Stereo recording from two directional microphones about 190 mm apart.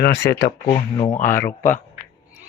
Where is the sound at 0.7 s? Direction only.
30° left (ahead or behind).